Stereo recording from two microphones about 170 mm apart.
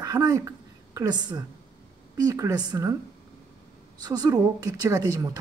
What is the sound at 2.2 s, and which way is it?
Speech, 20° right (ahead or behind).